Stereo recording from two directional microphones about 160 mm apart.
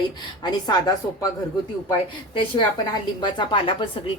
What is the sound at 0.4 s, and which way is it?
Speech, 25° left (ahead or behind).